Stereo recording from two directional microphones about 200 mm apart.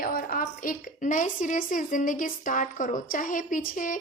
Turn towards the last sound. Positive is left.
turn(degrees=40)  # may be behind; listen again after turning